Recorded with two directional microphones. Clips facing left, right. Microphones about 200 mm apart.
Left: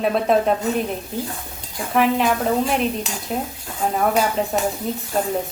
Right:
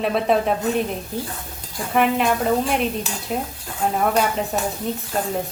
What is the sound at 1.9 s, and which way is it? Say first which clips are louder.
A woman's voice: left 1 dB; centre (ahead or behind).